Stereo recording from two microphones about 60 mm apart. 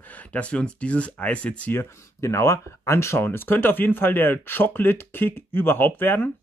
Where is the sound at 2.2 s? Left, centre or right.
Left.